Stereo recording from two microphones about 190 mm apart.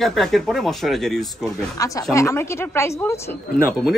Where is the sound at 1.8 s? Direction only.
15° left (ahead or behind).